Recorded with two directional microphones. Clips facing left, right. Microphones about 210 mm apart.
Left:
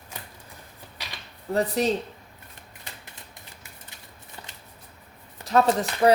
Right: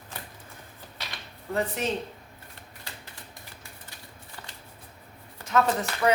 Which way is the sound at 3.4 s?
20° left (ahead or behind).